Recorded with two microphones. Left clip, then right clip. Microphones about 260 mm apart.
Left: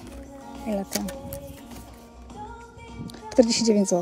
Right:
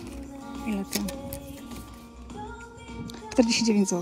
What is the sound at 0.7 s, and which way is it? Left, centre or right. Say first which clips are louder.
Speech: left 4 dB; centre.